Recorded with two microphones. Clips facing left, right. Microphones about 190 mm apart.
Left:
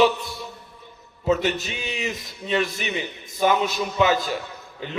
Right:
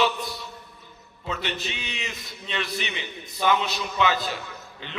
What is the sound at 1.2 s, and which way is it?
A man's voice, 45° left (ahead or behind).